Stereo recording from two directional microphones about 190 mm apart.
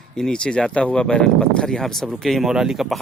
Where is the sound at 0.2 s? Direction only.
5° left (ahead or behind).